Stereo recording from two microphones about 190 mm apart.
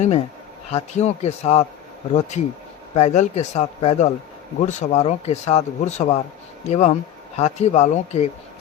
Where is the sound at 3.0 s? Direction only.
40° left (ahead or behind).